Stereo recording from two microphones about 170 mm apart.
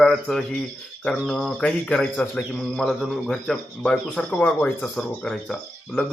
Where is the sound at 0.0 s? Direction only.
Centre (ahead or behind).